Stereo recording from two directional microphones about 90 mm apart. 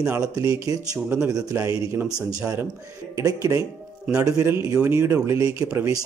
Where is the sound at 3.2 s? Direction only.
40° right (ahead or behind).